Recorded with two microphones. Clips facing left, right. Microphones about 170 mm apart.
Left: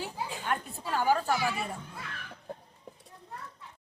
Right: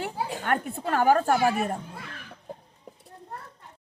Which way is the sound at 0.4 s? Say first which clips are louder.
Right 7 dB; 60° right (ahead or behind).